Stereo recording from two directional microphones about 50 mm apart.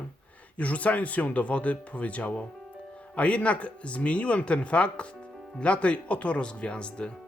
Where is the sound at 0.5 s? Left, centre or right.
Left.